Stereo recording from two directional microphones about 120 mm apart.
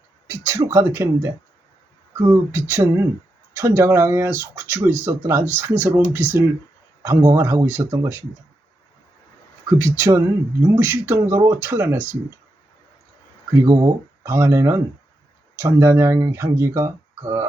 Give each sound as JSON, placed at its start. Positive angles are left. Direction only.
{"t": 0.4, "sound": "speech", "side_deg": -20}
{"t": 9.7, "sound": "speech", "side_deg": -20}
{"t": 13.6, "sound": "speech", "side_deg": -25}